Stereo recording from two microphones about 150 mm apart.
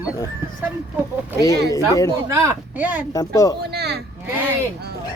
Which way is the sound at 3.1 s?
25° left (ahead or behind).